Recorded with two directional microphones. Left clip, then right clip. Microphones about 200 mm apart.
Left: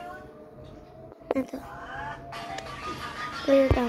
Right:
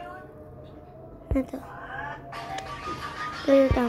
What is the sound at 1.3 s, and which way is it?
Speech, 5° left (ahead or behind).